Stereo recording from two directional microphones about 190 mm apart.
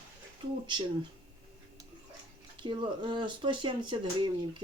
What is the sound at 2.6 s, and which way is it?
Speech, 25° right (ahead or behind).